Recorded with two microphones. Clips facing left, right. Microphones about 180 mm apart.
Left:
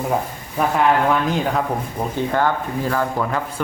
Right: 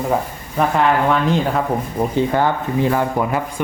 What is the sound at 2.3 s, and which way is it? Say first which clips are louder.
Speech: right 2 dB; 15° right (ahead or behind).